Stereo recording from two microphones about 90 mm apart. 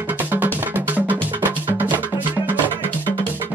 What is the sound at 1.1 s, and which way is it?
Music, 20° right (ahead or behind).